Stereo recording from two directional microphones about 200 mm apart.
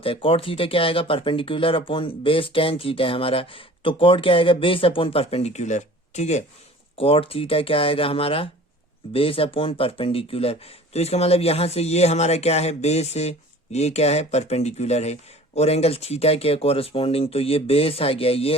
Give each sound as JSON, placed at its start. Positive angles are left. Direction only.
{"t": 0.0, "sound": "speech", "side_deg": 25}